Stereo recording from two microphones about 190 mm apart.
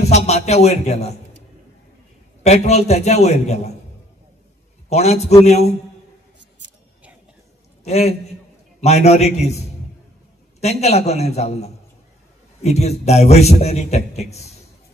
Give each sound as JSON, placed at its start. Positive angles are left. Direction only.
{"t": 0.0, "sound": "a man's voice", "side_deg": 35}
{"t": 2.4, "sound": "a man's voice", "side_deg": 35}
{"t": 4.8, "sound": "a man's voice", "side_deg": 35}
{"t": 7.8, "sound": "a man's voice", "side_deg": 35}
{"t": 10.6, "sound": "a man's voice", "side_deg": 35}